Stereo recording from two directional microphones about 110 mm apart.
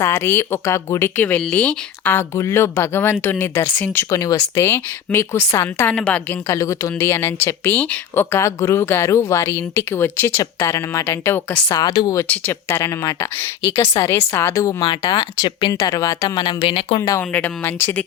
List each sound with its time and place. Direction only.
0.0 s a woman's voice: 25° left (ahead or behind)
4.1 s a woman's voice: 30° left (ahead or behind)
5.9 s a woman's voice: 10° left (ahead or behind)
6.5 s a woman's voice: 25° left (ahead or behind)
11.7 s a woman's voice: 40° left (ahead or behind)
12.3 s a woman's voice: 15° left (ahead or behind)
12.6 s a woman's voice: 25° left (ahead or behind); by 17.0 s 55° left (ahead or behind)
17.0 s a woman's voice: 20° left (ahead or behind)